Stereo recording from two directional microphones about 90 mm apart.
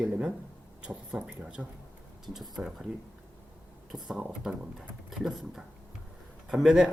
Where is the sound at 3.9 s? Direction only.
5° right (ahead or behind).